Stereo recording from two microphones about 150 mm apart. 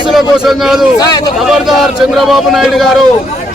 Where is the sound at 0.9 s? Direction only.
25° left (ahead or behind).